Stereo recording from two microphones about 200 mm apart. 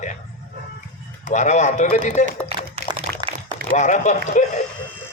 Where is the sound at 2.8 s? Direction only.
50° left (ahead or behind).